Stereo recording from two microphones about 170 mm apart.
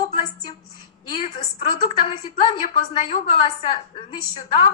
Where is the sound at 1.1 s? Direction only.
35° left (ahead or behind).